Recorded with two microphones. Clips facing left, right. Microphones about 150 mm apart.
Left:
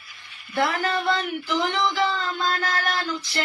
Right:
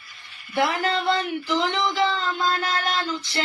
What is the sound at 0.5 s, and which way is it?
Speech, 20° right (ahead or behind).